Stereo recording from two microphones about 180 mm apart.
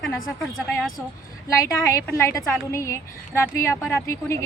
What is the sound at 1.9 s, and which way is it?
A woman's voice, 15° left (ahead or behind).